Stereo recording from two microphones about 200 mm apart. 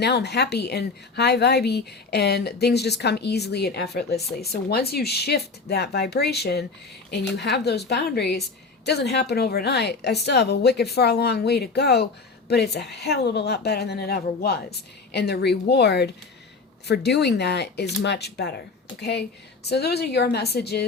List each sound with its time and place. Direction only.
0.0 s speech: 55° left (ahead or behind)
19.6 s speech: 55° left (ahead or behind)